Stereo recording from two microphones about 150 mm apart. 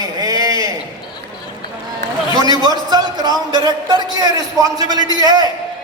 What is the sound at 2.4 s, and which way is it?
A man's voice, 25° right (ahead or behind).